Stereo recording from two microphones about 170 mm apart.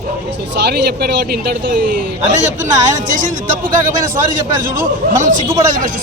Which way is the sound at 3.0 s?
50° right (ahead or behind).